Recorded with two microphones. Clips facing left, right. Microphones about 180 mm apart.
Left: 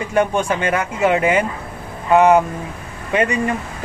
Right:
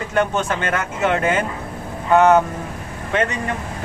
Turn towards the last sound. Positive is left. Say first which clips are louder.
# left 2 dB
turn(degrees=10)  # may be behind; listen again after turning